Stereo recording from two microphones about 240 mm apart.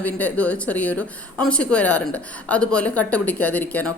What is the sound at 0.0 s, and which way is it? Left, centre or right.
A woman's voice, centre.